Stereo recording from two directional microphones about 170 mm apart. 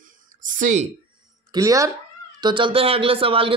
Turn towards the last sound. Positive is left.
turn(degrees=-30)  # may be behind; listen again after turning